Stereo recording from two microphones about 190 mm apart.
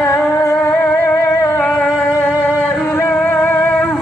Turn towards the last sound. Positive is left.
turn(degrees=5)  # may be behind; listen again after turning